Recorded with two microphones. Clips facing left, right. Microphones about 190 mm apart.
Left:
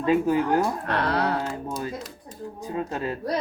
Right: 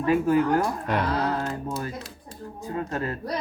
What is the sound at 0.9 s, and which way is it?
Speech, 65° left (ahead or behind).